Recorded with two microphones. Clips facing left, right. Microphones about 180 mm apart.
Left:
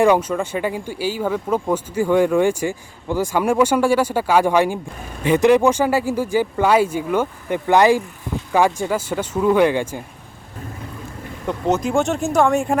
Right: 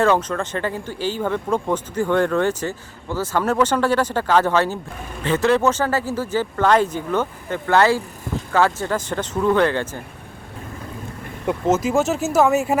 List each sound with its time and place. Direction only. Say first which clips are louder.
0.0 s speech: left 3 dB; 10° left (ahead or behind)
11.4 s speech: right 1 dB; 5° right (ahead or behind)